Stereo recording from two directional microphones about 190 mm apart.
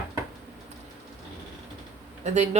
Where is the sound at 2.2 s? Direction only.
35° right (ahead or behind).